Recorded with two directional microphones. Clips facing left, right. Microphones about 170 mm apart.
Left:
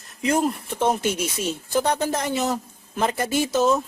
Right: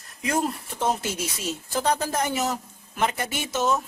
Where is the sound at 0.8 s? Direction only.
20° left (ahead or behind).